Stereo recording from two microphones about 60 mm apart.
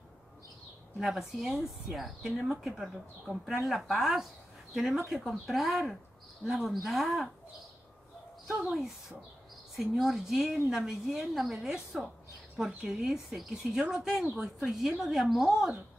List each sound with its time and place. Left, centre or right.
0.9 s speech: centre
8.6 s speech: centre